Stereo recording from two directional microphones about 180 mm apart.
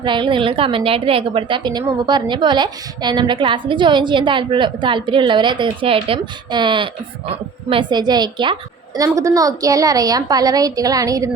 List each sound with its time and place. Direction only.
0.0 s a woman's voice: 25° right (ahead or behind)